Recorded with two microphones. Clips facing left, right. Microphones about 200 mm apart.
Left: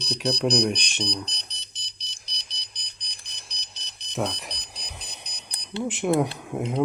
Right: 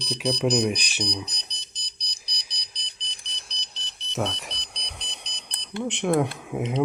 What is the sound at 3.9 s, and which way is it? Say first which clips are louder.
Music: right 3 dB; 15° left (ahead or behind).